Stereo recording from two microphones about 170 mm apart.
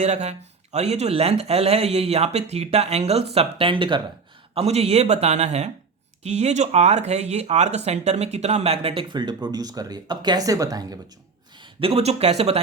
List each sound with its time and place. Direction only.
0.0 s speech: 40° right (ahead or behind); by 11.0 s 20° right (ahead or behind)
11.6 s speech: 35° right (ahead or behind)